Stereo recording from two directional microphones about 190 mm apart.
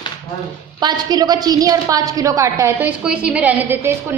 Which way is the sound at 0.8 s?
20° right (ahead or behind).